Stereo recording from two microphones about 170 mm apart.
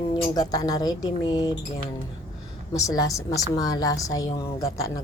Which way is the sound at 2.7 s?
20° left (ahead or behind).